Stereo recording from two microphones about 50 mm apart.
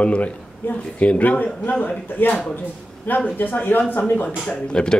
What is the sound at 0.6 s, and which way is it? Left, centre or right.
Speech, left.